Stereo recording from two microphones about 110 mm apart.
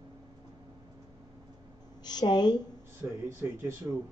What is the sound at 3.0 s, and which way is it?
Speech, 25° right (ahead or behind).